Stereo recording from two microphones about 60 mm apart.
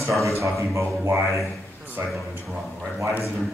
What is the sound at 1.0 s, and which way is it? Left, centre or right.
Speech, right.